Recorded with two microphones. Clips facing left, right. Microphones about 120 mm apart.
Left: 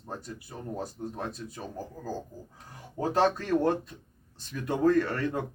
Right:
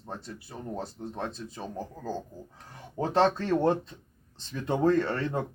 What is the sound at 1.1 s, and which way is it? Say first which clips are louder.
Speech: right 1 dB; 25° right (ahead or behind).